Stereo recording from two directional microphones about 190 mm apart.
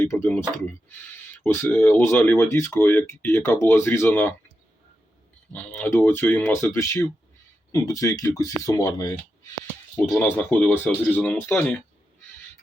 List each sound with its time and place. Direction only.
0.0 s speech: 15° left (ahead or behind)
1.5 s speech: 10° left (ahead or behind)
5.5 s speech: 10° left (ahead or behind)